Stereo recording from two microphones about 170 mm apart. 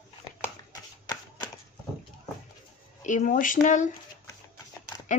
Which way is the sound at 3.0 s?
45° left (ahead or behind).